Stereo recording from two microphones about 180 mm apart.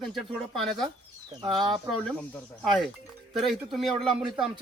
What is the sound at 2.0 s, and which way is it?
Speech, 5° left (ahead or behind).